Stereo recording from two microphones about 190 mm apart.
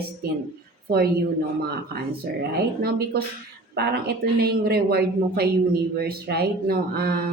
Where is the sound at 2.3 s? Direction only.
55° right (ahead or behind).